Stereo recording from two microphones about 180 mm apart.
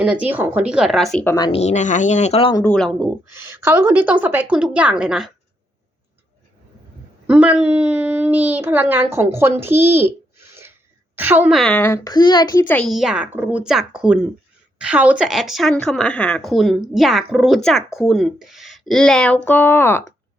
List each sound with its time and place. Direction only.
0.0 s speech: 5° right (ahead or behind)
1.2 s speech: 15° left (ahead or behind)
1.5 s speech: 35° left (ahead or behind)
2.6 s speech: 5° left (ahead or behind)
3.3 s a woman's voice: 15° right (ahead or behind)
7.3 s a child's voice: 5° right (ahead or behind)
11.8 s speech: 15° left (ahead or behind)
12.6 s speech: 5° left (ahead or behind)